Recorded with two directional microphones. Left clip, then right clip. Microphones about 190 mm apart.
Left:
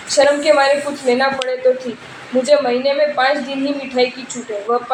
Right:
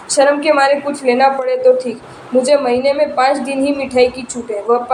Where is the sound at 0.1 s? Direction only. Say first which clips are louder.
Right 1 dB; 20° right (ahead or behind).